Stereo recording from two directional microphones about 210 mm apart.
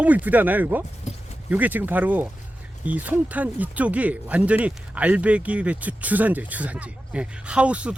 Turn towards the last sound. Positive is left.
turn(degrees=-5)  # may be behind; listen again after turning